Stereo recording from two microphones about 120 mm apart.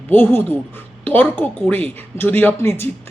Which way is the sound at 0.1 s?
15° left (ahead or behind).